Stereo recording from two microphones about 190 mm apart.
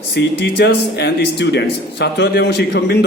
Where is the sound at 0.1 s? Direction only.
65° left (ahead or behind).